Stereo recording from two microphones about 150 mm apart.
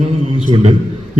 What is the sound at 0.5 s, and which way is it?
Speech, 35° right (ahead or behind).